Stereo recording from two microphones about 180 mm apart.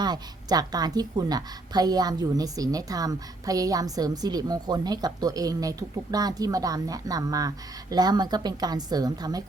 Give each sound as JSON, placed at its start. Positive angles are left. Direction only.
{"t": 0.0, "sound": "speech", "side_deg": -20}